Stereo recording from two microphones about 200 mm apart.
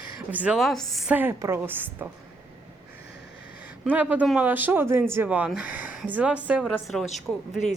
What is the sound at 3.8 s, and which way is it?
Speech, 10° right (ahead or behind).